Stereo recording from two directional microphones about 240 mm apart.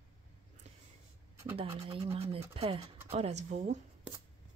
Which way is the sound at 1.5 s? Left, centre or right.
Right.